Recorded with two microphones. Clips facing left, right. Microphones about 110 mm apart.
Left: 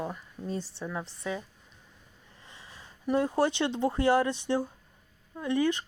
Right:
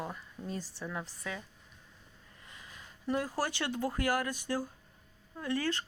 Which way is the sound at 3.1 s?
25° left (ahead or behind).